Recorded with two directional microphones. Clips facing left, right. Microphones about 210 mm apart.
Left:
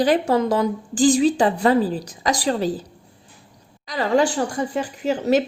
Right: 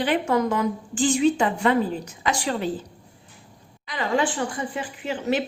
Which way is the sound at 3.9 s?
40° left (ahead or behind).